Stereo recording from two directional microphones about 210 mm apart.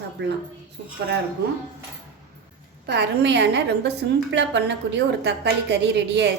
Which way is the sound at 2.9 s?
55° right (ahead or behind).